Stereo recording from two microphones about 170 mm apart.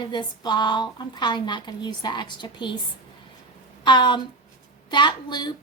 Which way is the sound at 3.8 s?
25° left (ahead or behind).